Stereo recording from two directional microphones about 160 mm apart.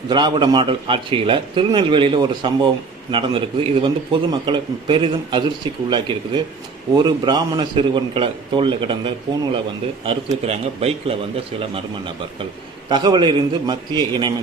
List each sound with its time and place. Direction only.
0.1 s a man's voice: 25° right (ahead or behind)
12.9 s a man's voice: 25° right (ahead or behind)